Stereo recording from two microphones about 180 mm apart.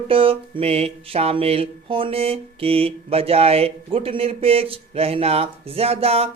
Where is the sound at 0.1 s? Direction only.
30° right (ahead or behind).